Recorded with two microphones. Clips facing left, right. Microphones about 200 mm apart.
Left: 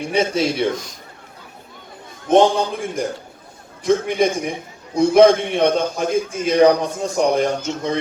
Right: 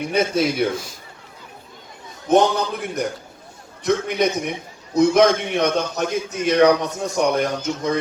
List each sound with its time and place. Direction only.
0.2 s a man's voice: 30° left (ahead or behind)
2.3 s a man's voice: 25° left (ahead or behind)